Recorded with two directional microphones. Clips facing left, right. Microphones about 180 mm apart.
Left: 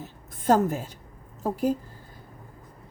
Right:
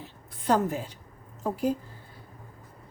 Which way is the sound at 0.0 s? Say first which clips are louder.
Left 4 dB; 45° left (ahead or behind).